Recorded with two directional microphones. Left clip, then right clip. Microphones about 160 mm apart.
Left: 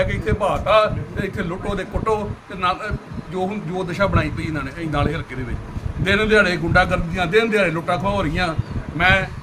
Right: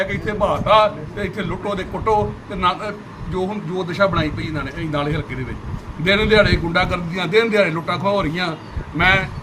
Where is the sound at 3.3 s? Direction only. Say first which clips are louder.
Right 1 dB; 20° left (ahead or behind).